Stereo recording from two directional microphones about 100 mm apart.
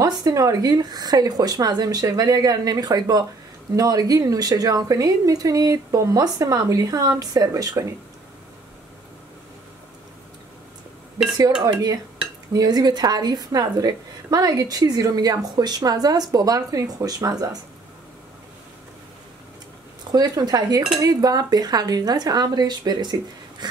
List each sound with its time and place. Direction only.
0.0 s a woman's voice: 35° right (ahead or behind)
12.5 s a woman's voice: 40° right (ahead or behind)
20.1 s a woman's voice: 40° right (ahead or behind)
23.6 s a sound: 45° right (ahead or behind)